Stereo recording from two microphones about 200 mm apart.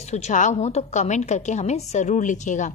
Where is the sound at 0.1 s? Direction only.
35° left (ahead or behind).